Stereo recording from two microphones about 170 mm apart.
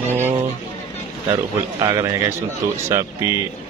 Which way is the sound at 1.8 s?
20° right (ahead or behind).